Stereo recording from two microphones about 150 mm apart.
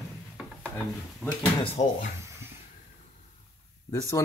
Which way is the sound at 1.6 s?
50° left (ahead or behind).